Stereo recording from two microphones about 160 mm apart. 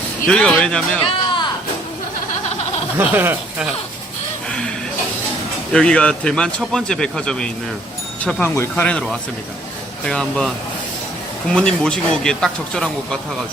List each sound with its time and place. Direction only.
0.3 s speech: 5° left (ahead or behind)
1.0 s a sound: 30° left (ahead or behind)
3.2 s speech: 10° right (ahead or behind)
5.7 s speech: 5° left (ahead or behind)